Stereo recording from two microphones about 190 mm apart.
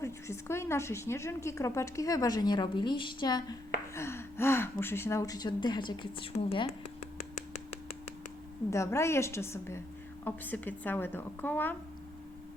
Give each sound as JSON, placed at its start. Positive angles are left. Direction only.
{"t": 0.0, "sound": "a woman's voice", "side_deg": 15}
{"t": 8.7, "sound": "a woman's voice", "side_deg": 15}